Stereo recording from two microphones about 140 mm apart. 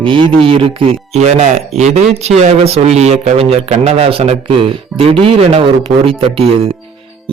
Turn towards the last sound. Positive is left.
turn(degrees=-40)  # may be behind; listen again after turning